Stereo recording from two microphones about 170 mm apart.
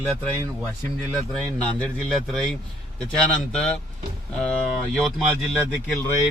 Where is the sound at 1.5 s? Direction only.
5° left (ahead or behind).